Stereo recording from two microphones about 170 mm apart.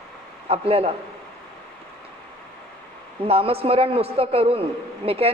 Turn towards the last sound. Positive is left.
turn(degrees=-35)  # may be behind; listen again after turning